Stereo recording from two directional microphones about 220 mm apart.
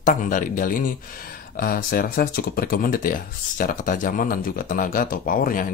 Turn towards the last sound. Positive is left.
turn(degrees=40)  # may be behind; listen again after turning